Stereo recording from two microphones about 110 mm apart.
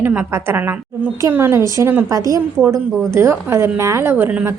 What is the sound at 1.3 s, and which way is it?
A woman's voice, 20° right (ahead or behind).